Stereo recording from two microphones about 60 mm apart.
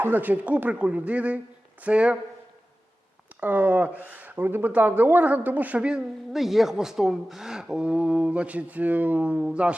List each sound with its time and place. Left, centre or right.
0.0 s speech: right
3.4 s speech: right
6.3 s speech: centre